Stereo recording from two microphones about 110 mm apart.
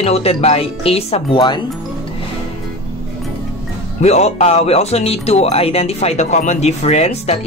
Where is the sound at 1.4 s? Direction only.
45° left (ahead or behind).